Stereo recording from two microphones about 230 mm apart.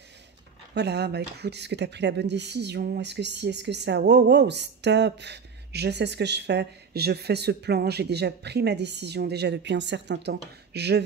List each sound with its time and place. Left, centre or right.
0.7 s speech: right